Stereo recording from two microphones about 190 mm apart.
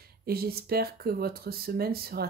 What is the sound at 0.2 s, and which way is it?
Speech, 55° right (ahead or behind).